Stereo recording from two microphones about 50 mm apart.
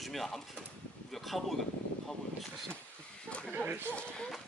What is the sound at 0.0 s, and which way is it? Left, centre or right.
Speech, centre.